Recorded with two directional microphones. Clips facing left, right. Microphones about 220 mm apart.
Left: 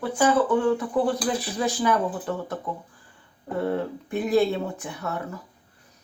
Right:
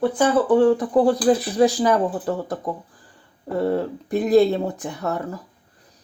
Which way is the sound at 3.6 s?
35° right (ahead or behind).